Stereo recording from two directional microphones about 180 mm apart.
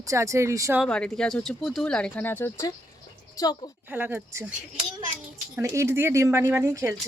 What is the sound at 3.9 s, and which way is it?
Speech, 10° right (ahead or behind).